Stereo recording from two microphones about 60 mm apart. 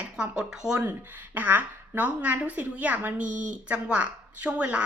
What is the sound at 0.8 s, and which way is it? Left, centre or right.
A woman's voice, right.